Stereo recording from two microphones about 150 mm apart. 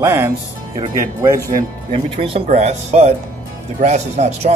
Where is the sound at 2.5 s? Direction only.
50° right (ahead or behind).